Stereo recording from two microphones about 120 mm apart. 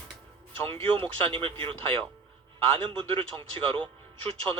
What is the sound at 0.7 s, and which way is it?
Speech, 45° right (ahead or behind).